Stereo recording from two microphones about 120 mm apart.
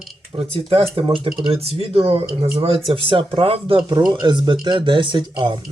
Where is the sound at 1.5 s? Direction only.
60° right (ahead or behind).